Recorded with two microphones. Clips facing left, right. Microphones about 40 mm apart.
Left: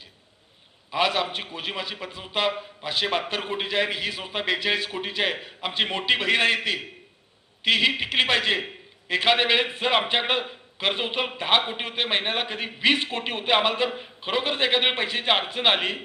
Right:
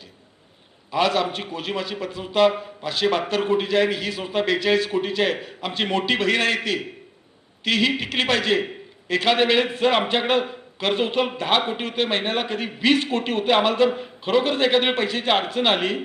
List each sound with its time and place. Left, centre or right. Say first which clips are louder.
0.9 s a man's voice: right 3 dB; centre